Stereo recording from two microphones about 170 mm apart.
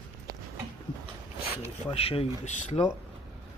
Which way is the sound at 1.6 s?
35° left (ahead or behind).